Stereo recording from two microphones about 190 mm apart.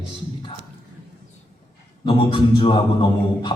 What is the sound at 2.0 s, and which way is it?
A man's voice, 25° left (ahead or behind).